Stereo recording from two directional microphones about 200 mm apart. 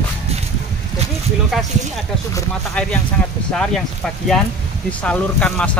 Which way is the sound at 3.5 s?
5° left (ahead or behind).